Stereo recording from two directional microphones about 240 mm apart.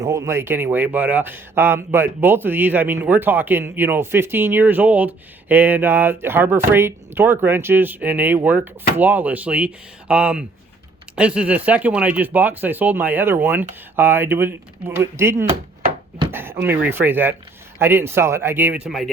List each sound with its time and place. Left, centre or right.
0.0 s speech: centre